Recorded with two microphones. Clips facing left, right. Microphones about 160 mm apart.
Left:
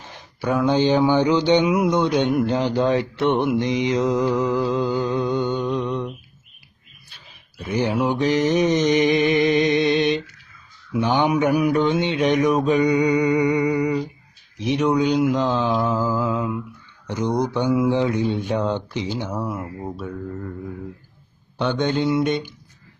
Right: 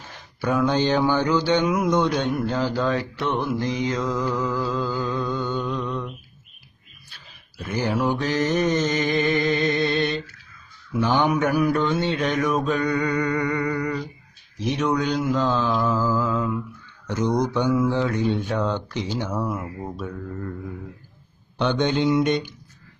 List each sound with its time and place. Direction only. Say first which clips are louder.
0.4 s speech: left 2 dB; 10° left (ahead or behind)
2.3 s mantra: left 4 dB; 20° left (ahead or behind)
7.9 s speech: left 2 dB; 10° left (ahead or behind)
9.2 s music: left 4 dB; 20° left (ahead or behind)
10.9 s speech: left 1 dB; 10° left (ahead or behind)
15.9 s mantra: left 1 dB; 15° left (ahead or behind)
17.1 s speech: even; 15° left (ahead or behind)
21.6 s mantra: even; 5° left (ahead or behind)